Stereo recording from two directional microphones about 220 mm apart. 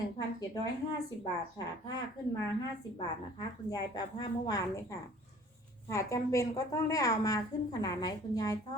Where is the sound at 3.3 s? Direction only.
20° left (ahead or behind).